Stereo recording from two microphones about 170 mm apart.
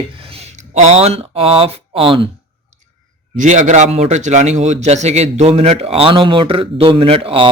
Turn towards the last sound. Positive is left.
turn(degrees=-30)  # may be behind; listen again after turning